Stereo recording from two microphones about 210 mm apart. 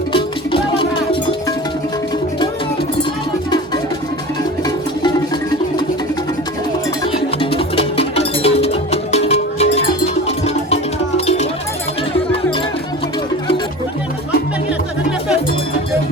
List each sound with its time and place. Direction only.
0.1 s music: 25° left (ahead or behind)
7.5 s music: 25° left (ahead or behind)